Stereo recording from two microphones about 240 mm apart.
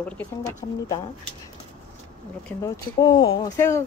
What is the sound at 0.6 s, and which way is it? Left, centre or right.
Speech, centre.